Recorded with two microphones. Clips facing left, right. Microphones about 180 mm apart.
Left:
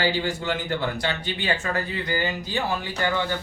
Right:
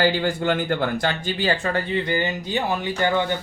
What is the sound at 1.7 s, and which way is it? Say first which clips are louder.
Speech: right 4 dB; 25° right (ahead or behind).